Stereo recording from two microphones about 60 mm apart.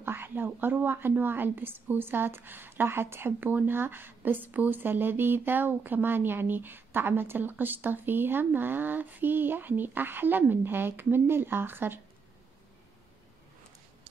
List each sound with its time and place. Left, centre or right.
0.0 s a woman's voice: right